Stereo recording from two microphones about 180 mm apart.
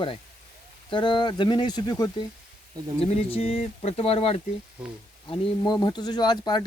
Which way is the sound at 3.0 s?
35° left (ahead or behind).